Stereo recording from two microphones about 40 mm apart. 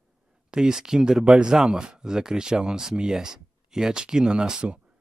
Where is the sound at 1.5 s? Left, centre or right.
Centre.